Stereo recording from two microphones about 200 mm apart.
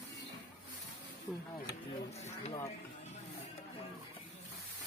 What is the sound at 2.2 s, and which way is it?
Speech, 35° left (ahead or behind).